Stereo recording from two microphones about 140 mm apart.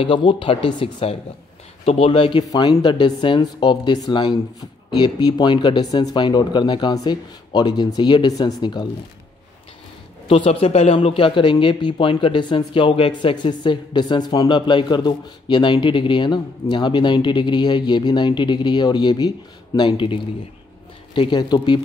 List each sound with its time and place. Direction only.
0.0 s a man's voice: 35° left (ahead or behind)
10.2 s a man's voice: 40° left (ahead or behind)